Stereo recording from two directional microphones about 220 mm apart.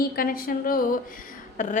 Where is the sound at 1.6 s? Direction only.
35° left (ahead or behind).